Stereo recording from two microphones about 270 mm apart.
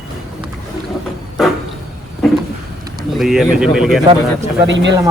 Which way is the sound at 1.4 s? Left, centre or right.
Centre.